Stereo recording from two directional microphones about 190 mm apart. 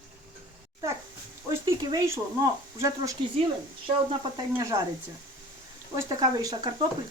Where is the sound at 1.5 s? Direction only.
20° right (ahead or behind).